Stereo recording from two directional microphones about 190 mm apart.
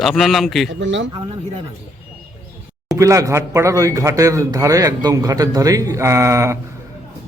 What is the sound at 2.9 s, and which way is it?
A man's voice, 15° right (ahead or behind).